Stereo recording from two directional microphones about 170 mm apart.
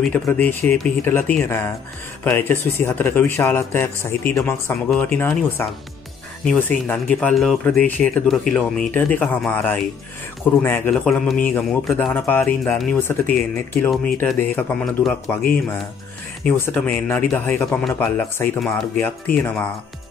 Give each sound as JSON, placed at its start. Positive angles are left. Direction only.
{"t": 0.0, "sound": "speech", "side_deg": 10}
{"t": 16.4, "sound": "speech", "side_deg": 10}